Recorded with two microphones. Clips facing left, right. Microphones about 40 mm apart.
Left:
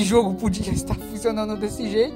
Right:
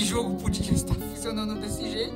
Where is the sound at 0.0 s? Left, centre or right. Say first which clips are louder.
Left 9 dB; left.